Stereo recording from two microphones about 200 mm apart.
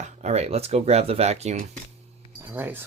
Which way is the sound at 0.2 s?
35° right (ahead or behind).